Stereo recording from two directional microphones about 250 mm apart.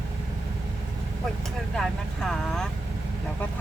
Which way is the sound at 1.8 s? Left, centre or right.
Centre.